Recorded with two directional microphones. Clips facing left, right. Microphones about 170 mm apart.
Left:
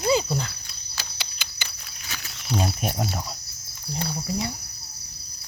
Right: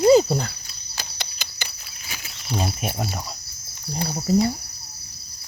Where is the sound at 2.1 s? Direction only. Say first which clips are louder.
Left 1 dB; 5° right (ahead or behind).